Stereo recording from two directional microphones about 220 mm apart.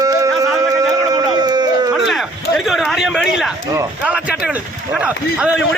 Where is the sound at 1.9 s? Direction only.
Centre (ahead or behind).